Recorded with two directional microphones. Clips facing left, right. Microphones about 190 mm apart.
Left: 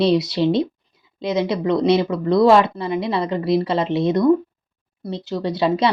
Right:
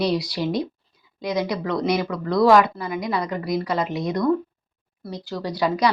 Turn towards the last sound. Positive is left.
turn(degrees=25)  # may be behind; listen again after turning